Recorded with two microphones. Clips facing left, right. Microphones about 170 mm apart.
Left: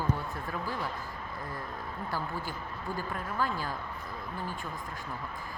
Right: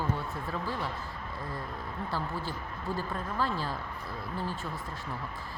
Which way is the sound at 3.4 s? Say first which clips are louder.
Right 1 dB; 30° right (ahead or behind).